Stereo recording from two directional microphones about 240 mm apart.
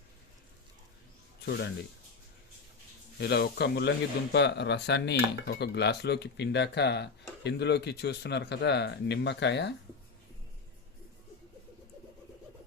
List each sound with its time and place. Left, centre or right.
3.2 s speech: left